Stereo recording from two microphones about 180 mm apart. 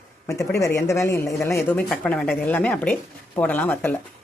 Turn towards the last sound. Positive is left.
turn(degrees=10)  # may be behind; listen again after turning